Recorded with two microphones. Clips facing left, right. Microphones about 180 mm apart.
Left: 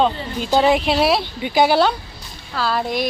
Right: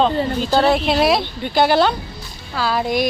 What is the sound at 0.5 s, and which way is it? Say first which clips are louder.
A woman's voice: left 1 dB; 15° left (ahead or behind).